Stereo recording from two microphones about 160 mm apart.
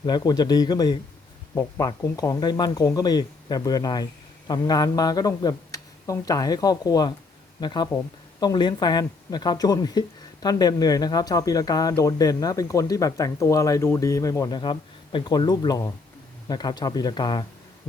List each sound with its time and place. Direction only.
0.0 s speech: 25° left (ahead or behind)